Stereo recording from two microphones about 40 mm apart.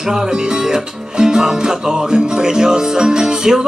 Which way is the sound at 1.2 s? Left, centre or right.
Centre.